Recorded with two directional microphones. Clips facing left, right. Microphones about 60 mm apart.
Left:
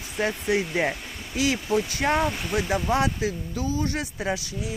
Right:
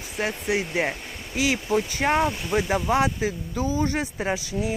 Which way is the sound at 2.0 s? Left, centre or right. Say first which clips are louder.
Right 1 dB; right.